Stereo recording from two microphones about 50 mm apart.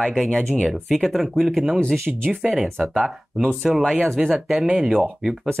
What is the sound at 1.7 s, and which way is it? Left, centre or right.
Speech, centre.